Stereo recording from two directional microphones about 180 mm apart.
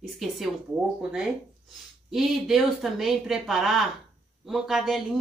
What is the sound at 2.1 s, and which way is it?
Speech, centre (ahead or behind).